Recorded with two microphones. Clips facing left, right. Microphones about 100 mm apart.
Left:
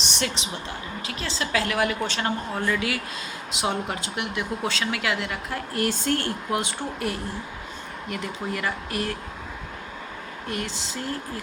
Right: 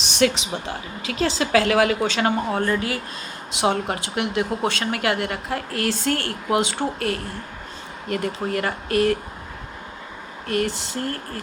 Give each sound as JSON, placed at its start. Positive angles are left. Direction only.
{"t": 0.1, "sound": "a sound", "side_deg": -90}
{"t": 1.2, "sound": "a woman's voice", "side_deg": -90}
{"t": 2.6, "sound": "speech", "side_deg": -40}
{"t": 3.6, "sound": "speech", "side_deg": -65}
{"t": 8.1, "sound": "speech", "side_deg": -60}
{"t": 10.5, "sound": "speech", "side_deg": -60}